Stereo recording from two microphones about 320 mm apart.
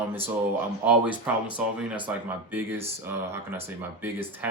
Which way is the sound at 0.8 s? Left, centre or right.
Centre.